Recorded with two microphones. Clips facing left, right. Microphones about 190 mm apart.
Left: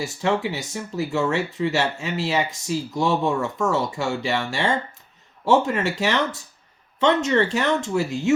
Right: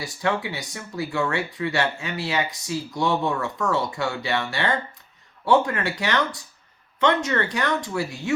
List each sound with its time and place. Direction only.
0.0 s speech: 25° left (ahead or behind)